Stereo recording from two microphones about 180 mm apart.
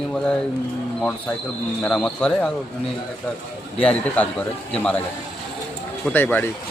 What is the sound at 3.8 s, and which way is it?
Speech, 5° left (ahead or behind).